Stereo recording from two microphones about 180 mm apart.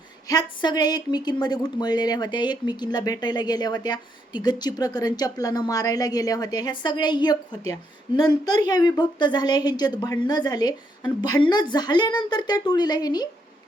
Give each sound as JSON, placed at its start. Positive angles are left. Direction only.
{"t": 0.3, "sound": "speech", "side_deg": 25}